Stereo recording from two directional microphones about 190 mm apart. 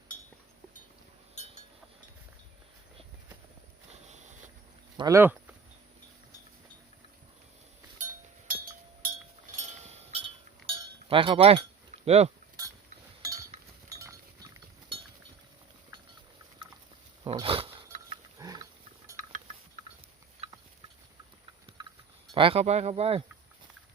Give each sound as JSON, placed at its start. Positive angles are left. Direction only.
{"t": 1.4, "sound": "a sound", "side_deg": 35}
{"t": 4.9, "sound": "speech", "side_deg": -15}
{"t": 7.9, "sound": "a sound", "side_deg": -45}
{"t": 9.6, "sound": "a sound", "side_deg": -35}
{"t": 10.7, "sound": "cowbell", "side_deg": -30}
{"t": 12.0, "sound": "speech", "side_deg": -35}
{"t": 13.2, "sound": "chink", "side_deg": -20}
{"t": 13.9, "sound": "goat", "side_deg": -15}
{"t": 17.2, "sound": "dog", "side_deg": -25}
{"t": 18.3, "sound": "pig", "side_deg": -20}
{"t": 21.8, "sound": "a sound", "side_deg": -20}
{"t": 22.4, "sound": "speech", "side_deg": -30}